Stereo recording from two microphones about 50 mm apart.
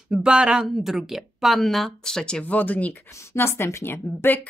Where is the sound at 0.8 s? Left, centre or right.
Centre.